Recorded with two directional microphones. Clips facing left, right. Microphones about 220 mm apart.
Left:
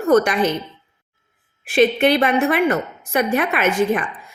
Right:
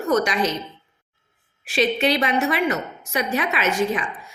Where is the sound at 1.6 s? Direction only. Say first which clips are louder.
Left 5 dB; 55° left (ahead or behind).